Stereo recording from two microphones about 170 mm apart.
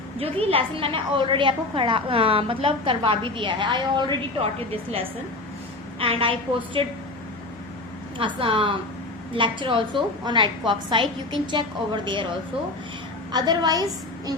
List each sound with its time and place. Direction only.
0.2 s a woman's voice: 35° right (ahead or behind)
8.2 s a woman's voice: 30° right (ahead or behind)
13.3 s a woman's voice: 25° right (ahead or behind)